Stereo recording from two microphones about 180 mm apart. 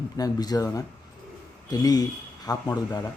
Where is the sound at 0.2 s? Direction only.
20° left (ahead or behind).